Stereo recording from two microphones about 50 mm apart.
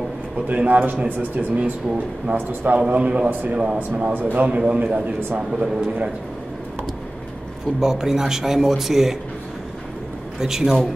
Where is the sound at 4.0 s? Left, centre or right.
Right.